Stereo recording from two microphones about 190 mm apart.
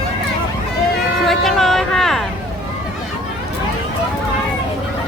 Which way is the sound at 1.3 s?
Centre (ahead or behind).